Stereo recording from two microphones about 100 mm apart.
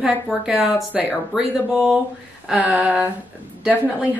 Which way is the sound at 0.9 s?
10° right (ahead or behind).